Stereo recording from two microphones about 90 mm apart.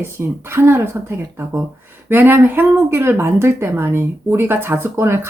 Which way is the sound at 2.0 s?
20° right (ahead or behind).